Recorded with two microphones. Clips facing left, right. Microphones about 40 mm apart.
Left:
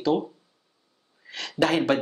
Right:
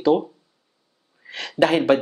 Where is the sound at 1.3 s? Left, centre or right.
Centre.